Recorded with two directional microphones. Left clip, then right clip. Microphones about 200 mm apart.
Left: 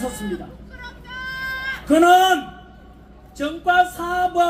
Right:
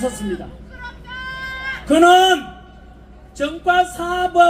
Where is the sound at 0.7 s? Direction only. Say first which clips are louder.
Right 3 dB; 40° left (ahead or behind).